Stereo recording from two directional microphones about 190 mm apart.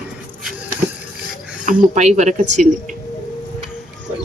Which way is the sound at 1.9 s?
40° right (ahead or behind).